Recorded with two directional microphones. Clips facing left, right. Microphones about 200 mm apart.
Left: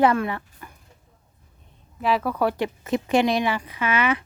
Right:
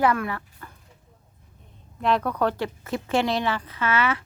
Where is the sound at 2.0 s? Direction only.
5° left (ahead or behind).